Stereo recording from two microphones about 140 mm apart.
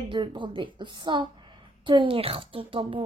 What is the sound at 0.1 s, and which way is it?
Speech, 35° right (ahead or behind).